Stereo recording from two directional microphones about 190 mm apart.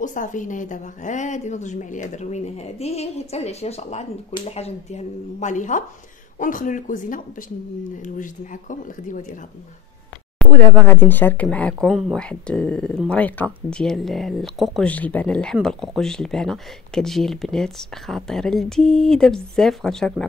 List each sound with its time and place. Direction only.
0.0 s speech: 40° left (ahead or behind)
10.4 s speech: 10° left (ahead or behind)